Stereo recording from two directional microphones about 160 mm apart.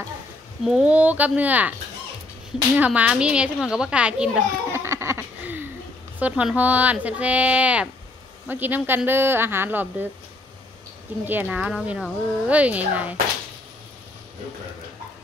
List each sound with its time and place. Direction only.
0.7 s a child's voice: 5° right (ahead or behind)
4.8 s a sound: 15° right (ahead or behind)
6.1 s speech: 10° right (ahead or behind)
11.2 s speech: 10° right (ahead or behind)